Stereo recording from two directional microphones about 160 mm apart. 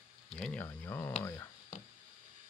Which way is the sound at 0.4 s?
5° left (ahead or behind).